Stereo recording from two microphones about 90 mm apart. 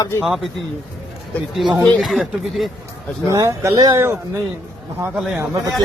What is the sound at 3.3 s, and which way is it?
Speech, 35° right (ahead or behind).